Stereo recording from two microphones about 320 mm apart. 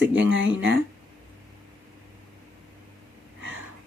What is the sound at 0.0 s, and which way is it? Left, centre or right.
Speech, right.